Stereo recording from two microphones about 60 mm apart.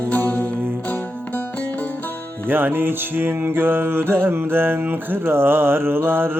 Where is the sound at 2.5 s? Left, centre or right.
Right.